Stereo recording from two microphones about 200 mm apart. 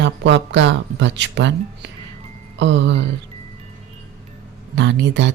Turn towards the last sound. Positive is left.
turn(degrees=-65)  # may be behind; listen again after turning